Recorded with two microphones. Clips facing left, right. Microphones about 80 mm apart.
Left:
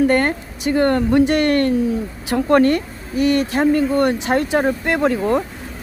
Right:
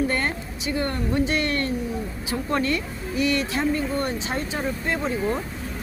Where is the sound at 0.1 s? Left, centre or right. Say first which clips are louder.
Left 9 dB; left.